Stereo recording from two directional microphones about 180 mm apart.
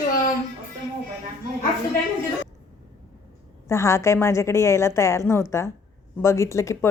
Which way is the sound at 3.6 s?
15° left (ahead or behind).